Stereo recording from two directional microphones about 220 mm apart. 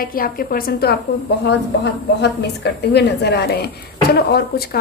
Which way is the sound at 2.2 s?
50° left (ahead or behind).